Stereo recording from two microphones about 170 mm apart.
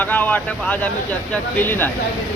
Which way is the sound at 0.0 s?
10° left (ahead or behind).